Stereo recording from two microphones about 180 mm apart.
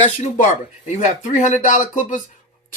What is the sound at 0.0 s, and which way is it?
Speech, 40° left (ahead or behind).